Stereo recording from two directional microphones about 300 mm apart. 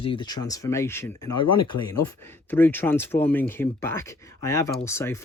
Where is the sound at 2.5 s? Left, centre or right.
Centre.